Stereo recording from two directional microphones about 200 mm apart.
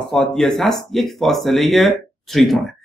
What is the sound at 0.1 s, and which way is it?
Speech, 5° left (ahead or behind).